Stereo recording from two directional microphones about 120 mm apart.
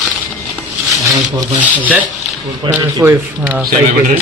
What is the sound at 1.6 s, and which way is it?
Speech, 10° right (ahead or behind).